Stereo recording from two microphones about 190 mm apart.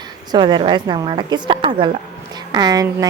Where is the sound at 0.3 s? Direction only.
25° right (ahead or behind).